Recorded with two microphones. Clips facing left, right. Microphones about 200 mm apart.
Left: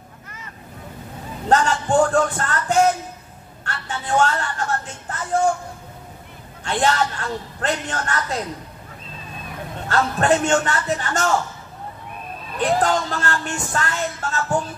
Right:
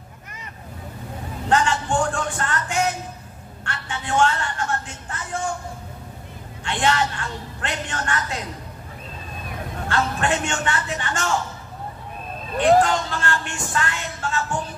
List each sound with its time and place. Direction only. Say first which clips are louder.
1.5 s music: left 3 dB; 40° left (ahead or behind)
3.6 s a sound: left 2 dB; 40° left (ahead or behind)
6.6 s speech: left 2 dB; 40° left (ahead or behind)
9.8 s speech: left 4 dB; 40° left (ahead or behind)
12.5 s speech: right 3 dB; 40° left (ahead or behind)